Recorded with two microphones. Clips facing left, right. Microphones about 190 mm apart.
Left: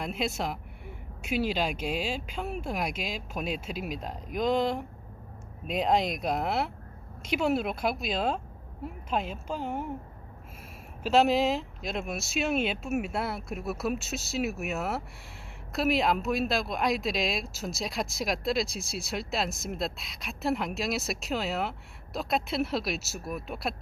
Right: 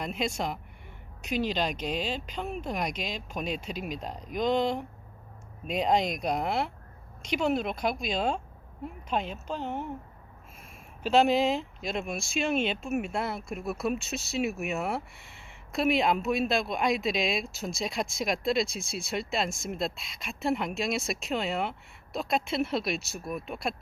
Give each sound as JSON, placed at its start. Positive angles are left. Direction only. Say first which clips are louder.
{"t": 0.0, "sound": "a woman's voice", "louder": "even", "side_deg": 5}
{"t": 11.0, "sound": "speech", "louder": "even", "side_deg": 0}